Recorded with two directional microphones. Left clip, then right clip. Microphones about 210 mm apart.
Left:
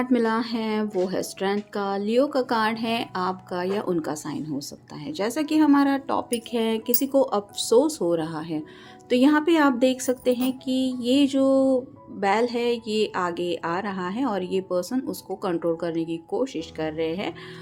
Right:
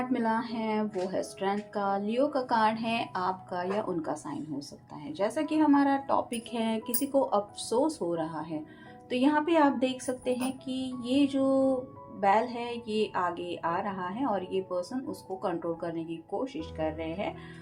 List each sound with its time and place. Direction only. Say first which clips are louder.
0.0 s a woman's voice: left 6 dB; 35° left (ahead or behind)